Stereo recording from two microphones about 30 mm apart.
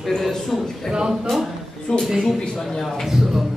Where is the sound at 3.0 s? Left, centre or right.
Centre.